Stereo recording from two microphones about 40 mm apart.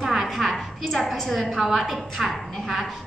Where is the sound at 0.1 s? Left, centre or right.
Centre.